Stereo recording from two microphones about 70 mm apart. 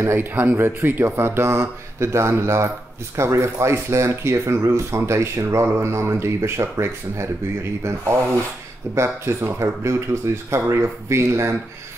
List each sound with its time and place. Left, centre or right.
0.0 s speech: right
8.9 s speech: right